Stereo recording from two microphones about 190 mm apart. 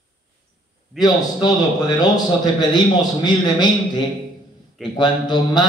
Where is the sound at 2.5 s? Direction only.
20° left (ahead or behind).